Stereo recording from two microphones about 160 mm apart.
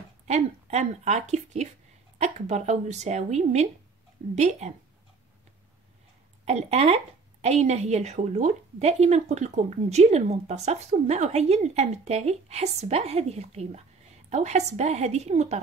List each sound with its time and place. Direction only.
0.3 s a woman's voice: 45° right (ahead or behind)
6.4 s a woman's voice: 40° right (ahead or behind)